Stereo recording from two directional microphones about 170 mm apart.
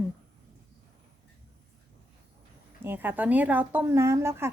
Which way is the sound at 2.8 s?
10° right (ahead or behind).